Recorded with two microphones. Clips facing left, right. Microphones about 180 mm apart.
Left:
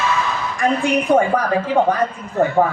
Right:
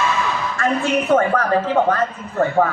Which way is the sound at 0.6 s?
15° left (ahead or behind).